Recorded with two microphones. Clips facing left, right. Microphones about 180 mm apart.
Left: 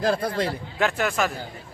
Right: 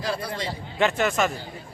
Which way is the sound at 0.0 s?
50° left (ahead or behind).